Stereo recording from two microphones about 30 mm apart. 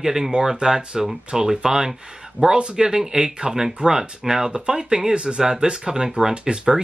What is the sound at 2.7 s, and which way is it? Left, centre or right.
Speech, centre.